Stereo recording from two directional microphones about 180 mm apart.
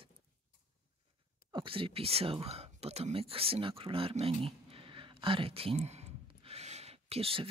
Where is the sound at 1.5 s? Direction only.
30° right (ahead or behind).